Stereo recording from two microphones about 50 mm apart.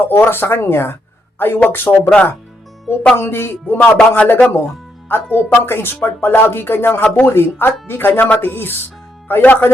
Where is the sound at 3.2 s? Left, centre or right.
Left.